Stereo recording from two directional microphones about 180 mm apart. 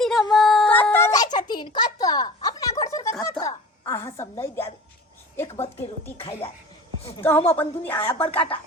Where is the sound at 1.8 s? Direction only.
20° left (ahead or behind).